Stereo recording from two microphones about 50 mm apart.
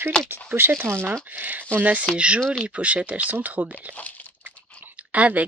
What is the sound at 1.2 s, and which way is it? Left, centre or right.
Speech, right.